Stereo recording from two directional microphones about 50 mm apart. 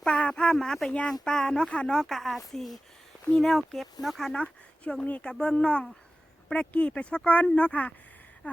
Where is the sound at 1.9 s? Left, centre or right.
Centre.